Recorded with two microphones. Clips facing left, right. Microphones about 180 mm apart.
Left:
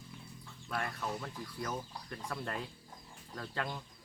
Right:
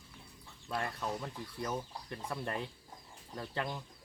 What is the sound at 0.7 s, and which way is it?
Speech, 20° right (ahead or behind).